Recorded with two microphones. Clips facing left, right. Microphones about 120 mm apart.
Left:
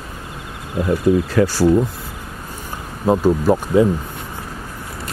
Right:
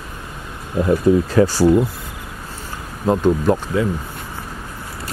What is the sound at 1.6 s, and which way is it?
Insect, 10° right (ahead or behind).